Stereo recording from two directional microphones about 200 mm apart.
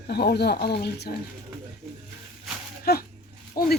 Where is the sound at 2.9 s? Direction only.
50° left (ahead or behind).